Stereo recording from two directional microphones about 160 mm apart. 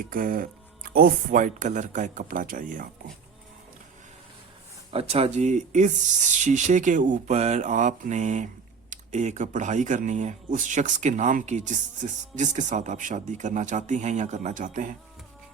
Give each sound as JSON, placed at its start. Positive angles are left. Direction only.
{"t": 0.1, "sound": "speech", "side_deg": -60}
{"t": 4.9, "sound": "speech", "side_deg": -35}